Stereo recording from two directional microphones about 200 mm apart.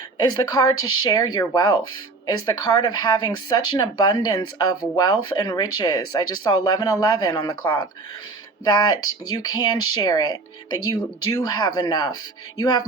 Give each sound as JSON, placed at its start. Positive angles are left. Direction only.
{"t": 0.3, "sound": "speech", "side_deg": 20}
{"t": 0.8, "sound": "speech", "side_deg": 90}
{"t": 1.0, "sound": "speech", "side_deg": 20}
{"t": 9.0, "sound": "speech", "side_deg": 90}
{"t": 9.3, "sound": "speech", "side_deg": 20}